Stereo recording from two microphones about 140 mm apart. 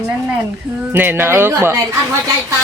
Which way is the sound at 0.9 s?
15° right (ahead or behind).